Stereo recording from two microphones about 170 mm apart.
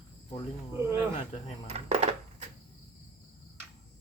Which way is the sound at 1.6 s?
40° right (ahead or behind).